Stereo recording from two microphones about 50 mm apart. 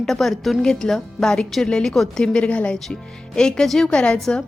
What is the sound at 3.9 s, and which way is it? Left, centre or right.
Speech, left.